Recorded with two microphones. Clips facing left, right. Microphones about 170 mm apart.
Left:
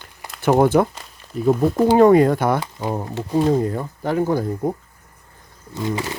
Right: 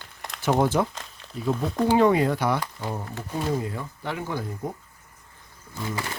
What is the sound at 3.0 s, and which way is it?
Speech, 30° left (ahead or behind).